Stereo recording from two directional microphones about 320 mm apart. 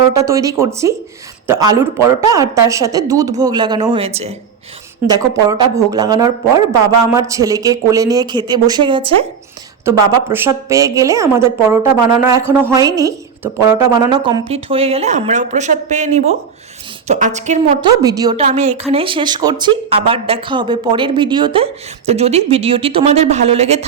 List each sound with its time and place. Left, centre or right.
0.1 s a woman's voice: centre